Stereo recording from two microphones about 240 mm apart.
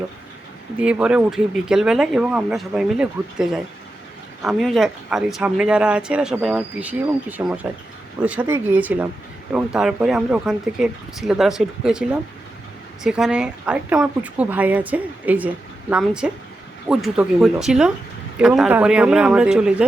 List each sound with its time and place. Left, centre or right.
0.8 s speech: centre